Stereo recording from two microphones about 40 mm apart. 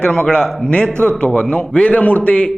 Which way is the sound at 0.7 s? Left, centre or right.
Left.